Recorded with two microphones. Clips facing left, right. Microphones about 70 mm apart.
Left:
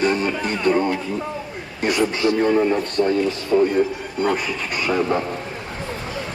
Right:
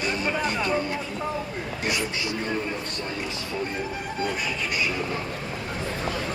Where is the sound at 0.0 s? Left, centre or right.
Left.